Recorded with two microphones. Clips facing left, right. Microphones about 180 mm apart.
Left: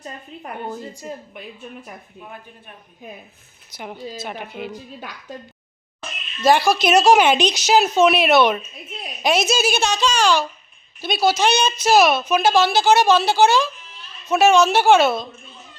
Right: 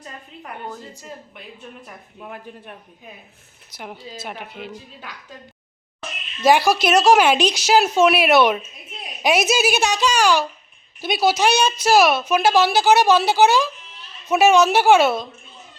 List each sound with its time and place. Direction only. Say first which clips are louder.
0.0 s a woman's voice: left 3 dB; 20° left (ahead or behind)
3.7 s a woman's voice: left 3 dB; centre (ahead or behind)
4.7 s speech: left 3 dB; 40° left (ahead or behind)
6.4 s a woman's voice: even; 15° right (ahead or behind)
6.8 s a woman's voice: left 1 dB; centre (ahead or behind)